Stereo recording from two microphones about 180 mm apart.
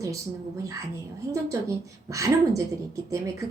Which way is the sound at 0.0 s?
15° right (ahead or behind).